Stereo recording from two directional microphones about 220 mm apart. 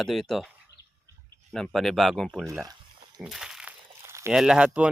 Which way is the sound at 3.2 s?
Centre (ahead or behind).